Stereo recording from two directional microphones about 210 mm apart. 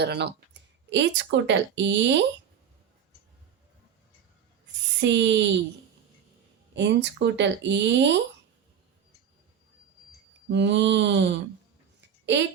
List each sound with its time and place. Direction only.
0.0 s speech: 50° right (ahead or behind)
4.9 s speech: 60° right (ahead or behind)
6.7 s speech: 55° right (ahead or behind)
10.5 s speech: 55° right (ahead or behind)
11.9 s a sound: 55° right (ahead or behind)